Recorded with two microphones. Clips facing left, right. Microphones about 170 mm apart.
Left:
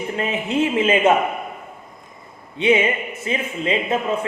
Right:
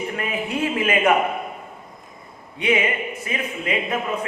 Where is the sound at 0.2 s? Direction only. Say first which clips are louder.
Left 6 dB; 25° left (ahead or behind).